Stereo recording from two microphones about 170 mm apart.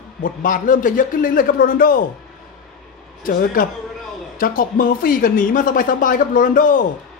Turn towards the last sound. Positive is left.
turn(degrees=50)  # may be behind; listen again after turning